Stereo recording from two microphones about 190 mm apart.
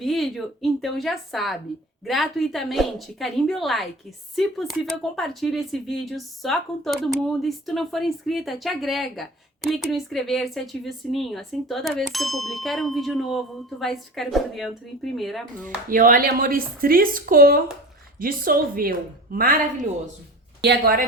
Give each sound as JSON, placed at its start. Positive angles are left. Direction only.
{"t": 0.0, "sound": "speech", "side_deg": 0}
{"t": 15.9, "sound": "speech", "side_deg": -45}